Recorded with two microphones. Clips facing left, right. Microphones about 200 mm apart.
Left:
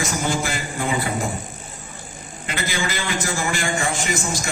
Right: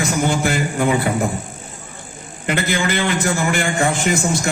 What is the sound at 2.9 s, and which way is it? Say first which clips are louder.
A man's voice: right 6 dB; 60° right (ahead or behind).